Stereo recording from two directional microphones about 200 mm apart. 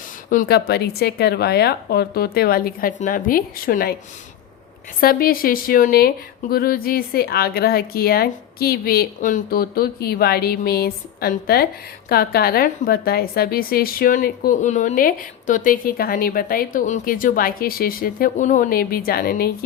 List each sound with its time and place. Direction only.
0.3 s a woman's voice: 45° left (ahead or behind)
4.9 s a woman's voice: 45° left (ahead or behind)